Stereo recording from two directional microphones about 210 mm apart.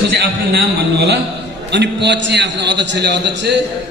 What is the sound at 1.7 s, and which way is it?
A man's voice, 55° right (ahead or behind).